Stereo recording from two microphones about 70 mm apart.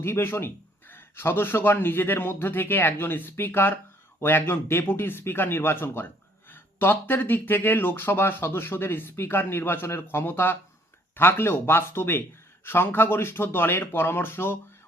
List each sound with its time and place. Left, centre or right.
0.0 s speech: left